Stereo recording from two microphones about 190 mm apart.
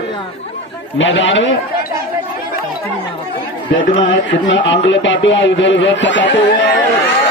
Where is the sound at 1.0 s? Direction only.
75° left (ahead or behind).